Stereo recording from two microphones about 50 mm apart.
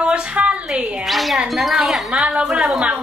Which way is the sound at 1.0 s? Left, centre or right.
Centre.